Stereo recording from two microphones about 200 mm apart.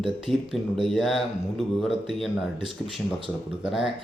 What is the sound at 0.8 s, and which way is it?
Speech, centre (ahead or behind).